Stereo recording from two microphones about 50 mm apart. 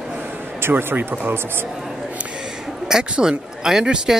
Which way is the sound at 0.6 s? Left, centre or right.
Right.